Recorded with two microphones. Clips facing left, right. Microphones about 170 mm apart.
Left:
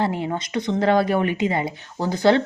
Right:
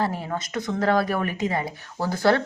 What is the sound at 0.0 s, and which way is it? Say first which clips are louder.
Speech: left 3 dB; 20° left (ahead or behind).